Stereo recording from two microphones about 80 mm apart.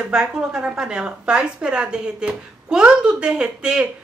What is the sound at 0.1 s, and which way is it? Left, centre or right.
A woman's voice, centre.